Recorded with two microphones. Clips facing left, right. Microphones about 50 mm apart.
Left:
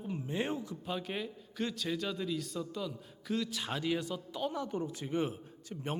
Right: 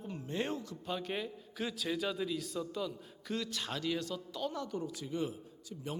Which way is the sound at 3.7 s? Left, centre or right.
Centre.